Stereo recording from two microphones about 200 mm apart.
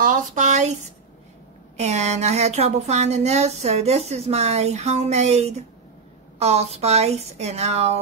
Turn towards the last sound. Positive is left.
turn(degrees=-30)  # may be behind; listen again after turning